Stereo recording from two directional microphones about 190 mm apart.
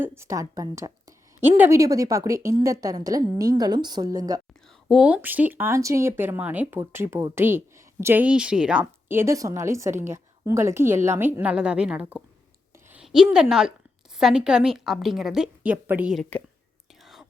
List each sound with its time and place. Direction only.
0.0 s a woman's voice: 15° right (ahead or behind)
4.9 s speech: 5° right (ahead or behind)
12.9 s a sound: 5° right (ahead or behind)
13.3 s a woman's voice: 5° right (ahead or behind)